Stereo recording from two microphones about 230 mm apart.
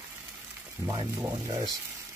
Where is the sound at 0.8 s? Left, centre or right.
Centre.